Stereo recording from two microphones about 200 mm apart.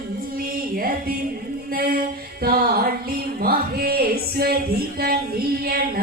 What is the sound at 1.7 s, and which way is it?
Music, 50° right (ahead or behind).